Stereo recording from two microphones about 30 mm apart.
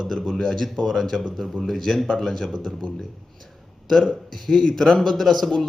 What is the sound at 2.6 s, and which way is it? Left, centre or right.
Speech, left.